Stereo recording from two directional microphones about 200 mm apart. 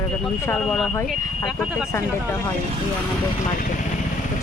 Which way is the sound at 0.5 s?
5° left (ahead or behind).